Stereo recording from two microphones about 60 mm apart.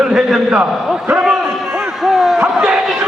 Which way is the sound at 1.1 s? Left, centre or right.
Centre.